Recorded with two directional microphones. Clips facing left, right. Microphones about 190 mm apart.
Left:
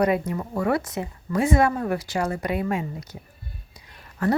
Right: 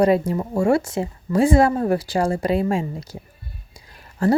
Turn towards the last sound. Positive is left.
turn(degrees=-30)  # may be behind; listen again after turning